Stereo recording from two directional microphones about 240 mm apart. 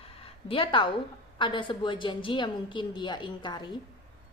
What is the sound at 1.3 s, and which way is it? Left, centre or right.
A woman's voice, centre.